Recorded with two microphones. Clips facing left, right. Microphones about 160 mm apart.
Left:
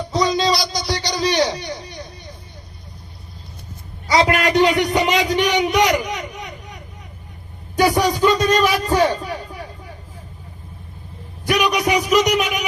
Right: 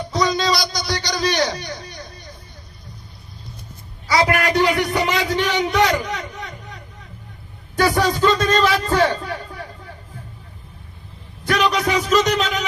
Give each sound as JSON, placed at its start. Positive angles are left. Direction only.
{"t": 0.1, "sound": "a sound", "side_deg": 30}
{"t": 4.1, "sound": "a man's voice", "side_deg": 20}
{"t": 7.8, "sound": "a man's voice", "side_deg": 15}
{"t": 11.4, "sound": "a man's voice", "side_deg": 15}